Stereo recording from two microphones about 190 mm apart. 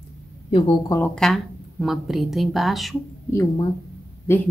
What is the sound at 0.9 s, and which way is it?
A woman's voice, 10° left (ahead or behind).